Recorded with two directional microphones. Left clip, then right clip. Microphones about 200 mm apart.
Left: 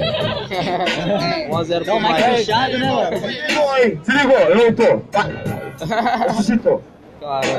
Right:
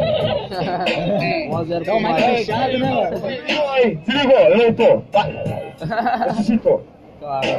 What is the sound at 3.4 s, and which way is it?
A man's voice, 45° left (ahead or behind).